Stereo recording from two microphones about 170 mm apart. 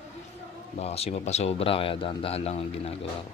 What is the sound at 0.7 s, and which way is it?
Speech, 35° left (ahead or behind).